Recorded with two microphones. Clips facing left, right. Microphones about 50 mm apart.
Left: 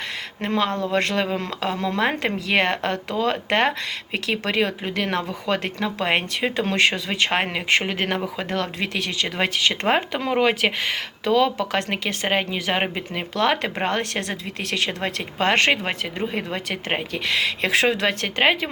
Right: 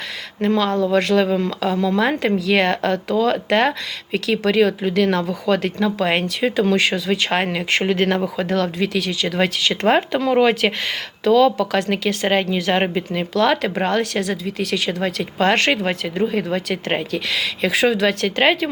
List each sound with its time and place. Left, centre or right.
0.4 s speech: left
8.8 s speech: left
9.8 s speech: centre; by 15.3 s left
15.4 s speech: centre